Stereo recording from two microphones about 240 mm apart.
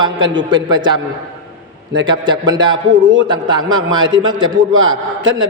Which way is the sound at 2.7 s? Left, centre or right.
Right.